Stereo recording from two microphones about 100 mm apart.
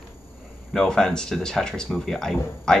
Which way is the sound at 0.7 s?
5° left (ahead or behind).